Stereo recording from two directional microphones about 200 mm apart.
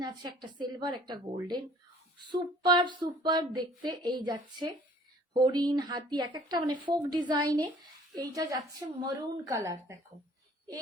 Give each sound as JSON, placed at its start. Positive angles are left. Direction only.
{"t": 0.0, "sound": "speech", "side_deg": -20}